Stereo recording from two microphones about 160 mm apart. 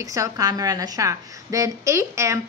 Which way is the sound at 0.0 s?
20° right (ahead or behind).